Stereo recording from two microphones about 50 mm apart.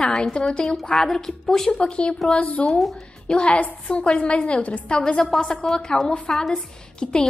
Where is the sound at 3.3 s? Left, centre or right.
Left.